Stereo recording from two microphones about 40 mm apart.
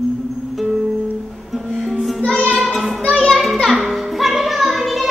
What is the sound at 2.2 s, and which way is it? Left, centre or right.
Child singing, left.